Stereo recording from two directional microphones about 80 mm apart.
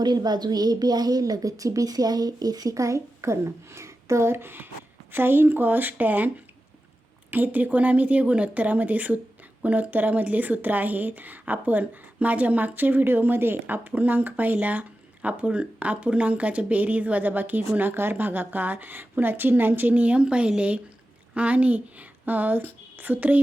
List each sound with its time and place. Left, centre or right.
0.0 s a woman's voice: right